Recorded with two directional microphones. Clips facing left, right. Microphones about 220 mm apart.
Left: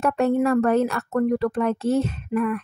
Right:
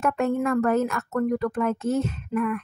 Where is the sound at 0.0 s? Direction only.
35° left (ahead or behind).